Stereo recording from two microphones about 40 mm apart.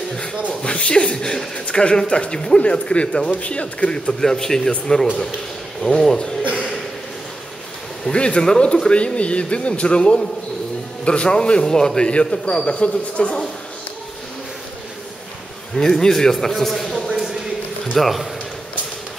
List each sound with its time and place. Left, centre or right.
0.1 s a sound: centre
0.7 s speech: left
4.2 s a man's voice: centre
6.4 s a sound: right
8.0 s a man's voice: left
15.7 s a man's voice: centre